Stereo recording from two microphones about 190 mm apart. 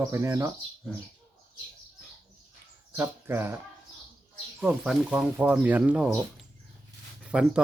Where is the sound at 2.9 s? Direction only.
10° right (ahead or behind).